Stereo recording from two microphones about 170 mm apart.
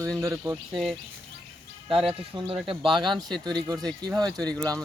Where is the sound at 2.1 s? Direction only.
30° right (ahead or behind).